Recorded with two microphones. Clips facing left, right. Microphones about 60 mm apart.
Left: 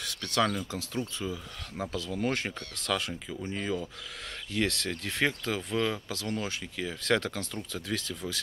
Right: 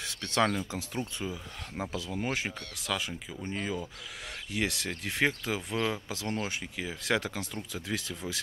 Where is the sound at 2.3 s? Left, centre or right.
Centre.